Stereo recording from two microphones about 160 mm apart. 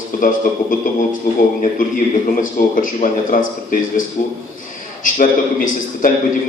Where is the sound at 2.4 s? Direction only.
55° left (ahead or behind).